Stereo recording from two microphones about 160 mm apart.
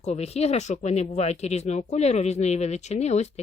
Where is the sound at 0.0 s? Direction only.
40° left (ahead or behind).